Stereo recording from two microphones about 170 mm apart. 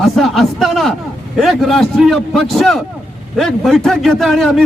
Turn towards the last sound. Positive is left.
turn(degrees=0)  # may be behind; listen again after turning